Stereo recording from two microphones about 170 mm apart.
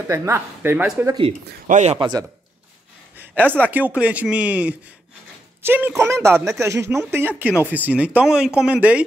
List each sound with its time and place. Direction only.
0.1 s speech: 15° right (ahead or behind)
1.7 s a man's voice: 45° right (ahead or behind)
2.0 s a man's voice: 25° right (ahead or behind)
3.2 s a sound: 10° right (ahead or behind)
3.7 s speech: 10° right (ahead or behind)